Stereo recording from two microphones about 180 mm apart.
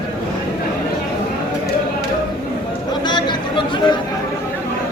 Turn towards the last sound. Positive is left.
turn(degrees=25)  # may be behind; listen again after turning